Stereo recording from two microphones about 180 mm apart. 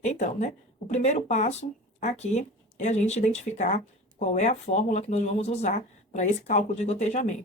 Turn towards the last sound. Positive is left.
turn(degrees=40)  # may be behind; listen again after turning